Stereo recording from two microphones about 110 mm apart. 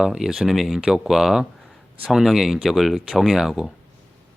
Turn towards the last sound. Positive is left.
turn(degrees=-5)  # may be behind; listen again after turning